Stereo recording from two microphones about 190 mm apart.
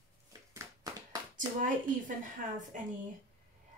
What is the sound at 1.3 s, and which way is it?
Speech, 45° right (ahead or behind).